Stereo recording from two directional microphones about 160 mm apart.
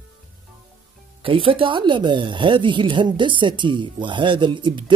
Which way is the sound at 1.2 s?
35° right (ahead or behind).